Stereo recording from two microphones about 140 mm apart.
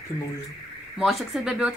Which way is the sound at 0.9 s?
Centre (ahead or behind).